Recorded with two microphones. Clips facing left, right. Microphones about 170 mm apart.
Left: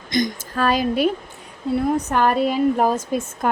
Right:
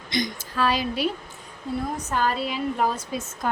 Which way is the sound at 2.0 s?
60° left (ahead or behind).